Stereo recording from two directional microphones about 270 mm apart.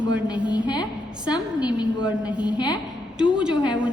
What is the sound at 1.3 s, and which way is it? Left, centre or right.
Speech, centre.